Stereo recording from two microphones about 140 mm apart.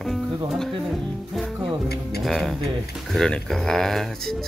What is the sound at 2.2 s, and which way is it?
Speech, centre (ahead or behind).